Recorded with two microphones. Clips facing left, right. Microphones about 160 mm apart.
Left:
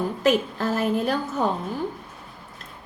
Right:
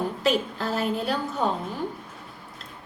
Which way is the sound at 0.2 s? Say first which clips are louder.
Left 5 dB; 45° left (ahead or behind).